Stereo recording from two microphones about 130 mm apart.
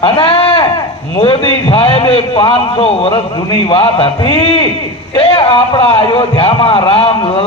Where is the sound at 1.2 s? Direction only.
45° left (ahead or behind).